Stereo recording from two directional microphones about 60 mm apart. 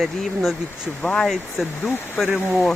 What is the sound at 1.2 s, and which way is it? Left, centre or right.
Speech, centre.